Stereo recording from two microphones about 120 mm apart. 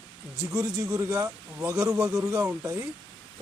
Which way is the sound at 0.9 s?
30° right (ahead or behind).